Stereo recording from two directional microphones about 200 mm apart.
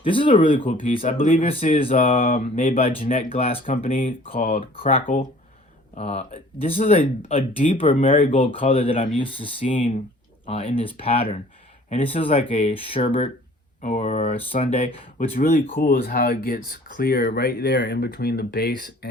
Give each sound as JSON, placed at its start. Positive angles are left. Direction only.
{"t": 0.0, "sound": "speech", "side_deg": 25}
{"t": 15.2, "sound": "speech", "side_deg": 40}